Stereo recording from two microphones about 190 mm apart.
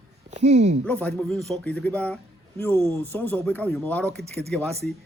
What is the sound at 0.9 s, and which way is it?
Speech, 10° left (ahead or behind).